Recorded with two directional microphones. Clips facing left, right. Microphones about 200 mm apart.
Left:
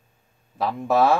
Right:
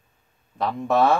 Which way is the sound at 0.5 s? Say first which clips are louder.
Even; 5° left (ahead or behind).